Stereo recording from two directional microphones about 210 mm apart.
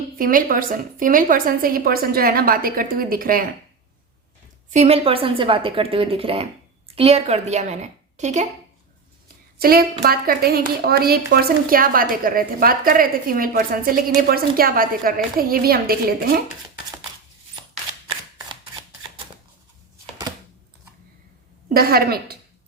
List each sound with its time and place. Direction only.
0.2 s a woman's voice: 40° right (ahead or behind)
4.7 s a woman's voice: 30° right (ahead or behind)
9.6 s a woman's voice: 45° right (ahead or behind)
21.7 s a woman's voice: 45° right (ahead or behind)